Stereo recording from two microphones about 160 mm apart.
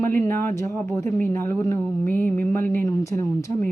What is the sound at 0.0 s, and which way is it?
Speech, 15° left (ahead or behind).